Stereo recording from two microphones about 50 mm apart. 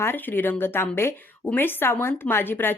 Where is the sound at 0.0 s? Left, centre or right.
Left.